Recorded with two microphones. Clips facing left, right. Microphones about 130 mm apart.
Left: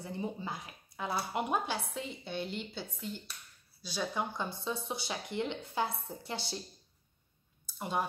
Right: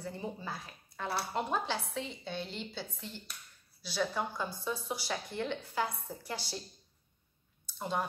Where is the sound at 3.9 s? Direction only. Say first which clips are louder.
Right 1 dB; 20° left (ahead or behind).